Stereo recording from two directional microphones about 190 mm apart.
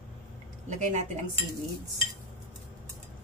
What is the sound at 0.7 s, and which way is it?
Speech, 40° right (ahead or behind).